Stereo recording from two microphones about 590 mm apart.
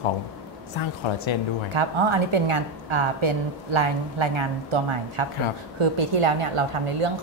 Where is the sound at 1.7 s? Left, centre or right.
Right.